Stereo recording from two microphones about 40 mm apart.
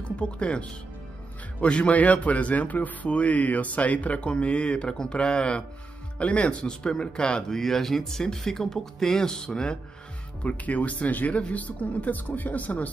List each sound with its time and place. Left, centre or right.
0.2 s a man's voice: left
6.6 s speech: left
10.4 s a man's voice: left